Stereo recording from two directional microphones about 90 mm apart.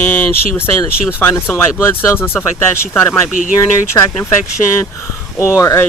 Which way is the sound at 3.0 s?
30° left (ahead or behind).